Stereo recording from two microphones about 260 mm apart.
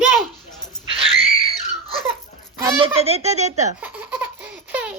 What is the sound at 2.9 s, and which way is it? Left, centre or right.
Speech, right.